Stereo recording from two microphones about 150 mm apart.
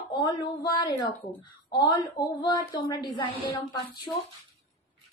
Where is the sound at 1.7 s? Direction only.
30° left (ahead or behind).